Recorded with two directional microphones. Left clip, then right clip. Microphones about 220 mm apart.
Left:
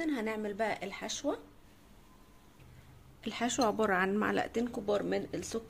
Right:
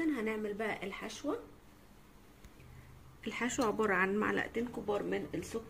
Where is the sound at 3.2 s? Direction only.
40° left (ahead or behind).